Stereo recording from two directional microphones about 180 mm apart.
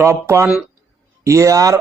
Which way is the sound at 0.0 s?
15° right (ahead or behind).